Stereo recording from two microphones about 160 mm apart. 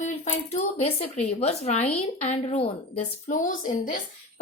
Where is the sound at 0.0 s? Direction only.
45° left (ahead or behind).